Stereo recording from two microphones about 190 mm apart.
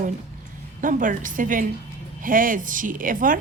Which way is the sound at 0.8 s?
45° right (ahead or behind).